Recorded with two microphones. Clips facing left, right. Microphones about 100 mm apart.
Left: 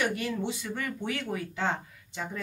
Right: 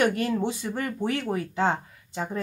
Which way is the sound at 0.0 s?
45° right (ahead or behind).